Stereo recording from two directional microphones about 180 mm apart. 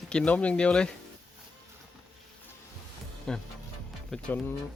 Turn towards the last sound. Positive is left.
turn(degrees=10)  # may be behind; listen again after turning